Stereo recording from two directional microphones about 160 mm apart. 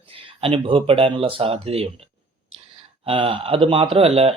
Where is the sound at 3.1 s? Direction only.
35° right (ahead or behind).